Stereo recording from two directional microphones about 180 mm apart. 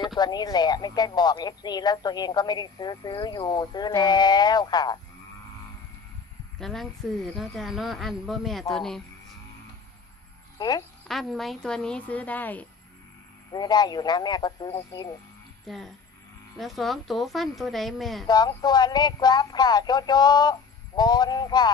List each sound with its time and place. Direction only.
0.0 s speech: 25° left (ahead or behind)
6.6 s speech: centre (ahead or behind)
11.1 s speech: centre (ahead or behind)
13.5 s speech: 25° left (ahead or behind)
15.6 s speech: centre (ahead or behind)
18.2 s speech: 20° left (ahead or behind)